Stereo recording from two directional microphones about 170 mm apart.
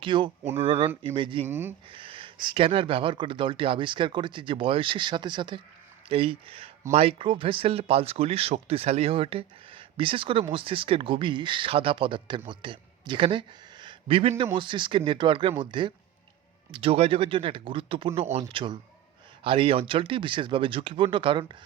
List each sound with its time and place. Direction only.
0.0 s speech: 30° right (ahead or behind)
1.5 s speech: 15° right (ahead or behind)
1.9 s speech: 30° right (ahead or behind)